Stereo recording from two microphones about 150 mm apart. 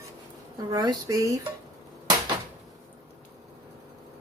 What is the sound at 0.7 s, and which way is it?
Speech, 25° right (ahead or behind).